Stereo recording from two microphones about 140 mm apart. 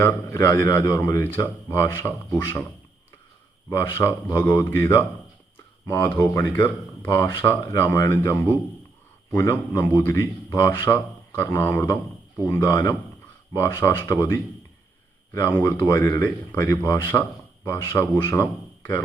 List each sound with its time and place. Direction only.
0.0 s speech: 20° left (ahead or behind)
3.7 s speech: 20° left (ahead or behind)
15.6 s speech: 20° left (ahead or behind)